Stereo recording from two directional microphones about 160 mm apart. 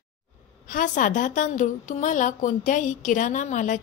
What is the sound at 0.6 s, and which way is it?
A woman's voice, 55° left (ahead or behind).